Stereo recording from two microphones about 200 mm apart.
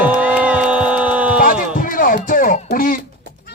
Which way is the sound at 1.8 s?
45° left (ahead or behind).